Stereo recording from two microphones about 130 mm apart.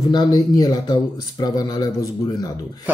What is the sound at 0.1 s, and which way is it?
Speech, 30° left (ahead or behind).